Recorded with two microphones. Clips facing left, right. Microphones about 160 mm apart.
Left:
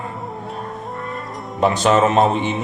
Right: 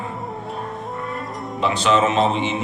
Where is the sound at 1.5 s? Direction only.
45° left (ahead or behind).